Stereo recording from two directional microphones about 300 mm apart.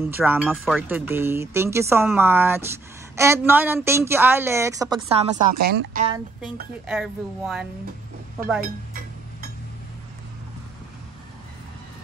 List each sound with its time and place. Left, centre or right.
0.0 s speech: centre
5.6 s a woman's voice: right
6.9 s speech: centre